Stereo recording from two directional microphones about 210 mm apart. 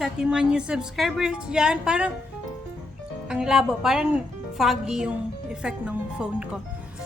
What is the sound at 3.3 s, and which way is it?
A woman's voice, 5° right (ahead or behind).